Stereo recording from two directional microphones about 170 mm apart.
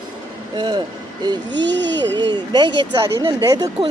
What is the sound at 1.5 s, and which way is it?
Speech, 90° right.